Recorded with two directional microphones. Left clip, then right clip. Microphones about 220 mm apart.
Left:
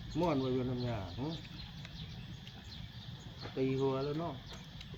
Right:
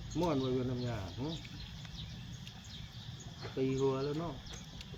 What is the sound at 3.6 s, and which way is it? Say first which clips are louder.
Speech: right 1 dB; 45° left (ahead or behind).